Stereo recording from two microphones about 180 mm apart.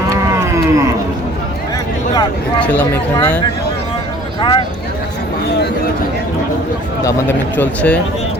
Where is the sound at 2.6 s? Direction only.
5° left (ahead or behind).